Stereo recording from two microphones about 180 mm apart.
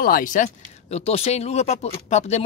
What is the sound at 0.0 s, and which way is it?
Speech, 50° left (ahead or behind).